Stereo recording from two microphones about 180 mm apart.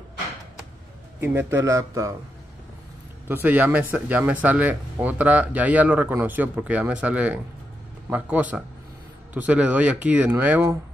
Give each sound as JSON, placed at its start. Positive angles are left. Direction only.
{"t": 1.2, "sound": "speech", "side_deg": -15}
{"t": 3.3, "sound": "speech", "side_deg": -10}